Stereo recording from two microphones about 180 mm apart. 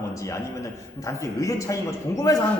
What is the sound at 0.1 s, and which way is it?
A man's voice, 15° left (ahead or behind).